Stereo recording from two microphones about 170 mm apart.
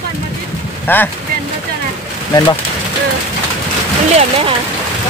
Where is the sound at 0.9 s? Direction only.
10° left (ahead or behind).